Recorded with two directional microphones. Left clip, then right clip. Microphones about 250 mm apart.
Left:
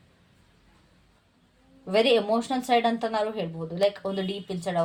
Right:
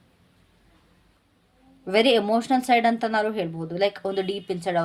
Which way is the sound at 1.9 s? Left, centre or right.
Right.